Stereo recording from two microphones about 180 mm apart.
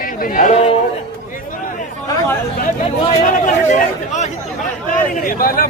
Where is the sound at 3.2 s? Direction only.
45° left (ahead or behind).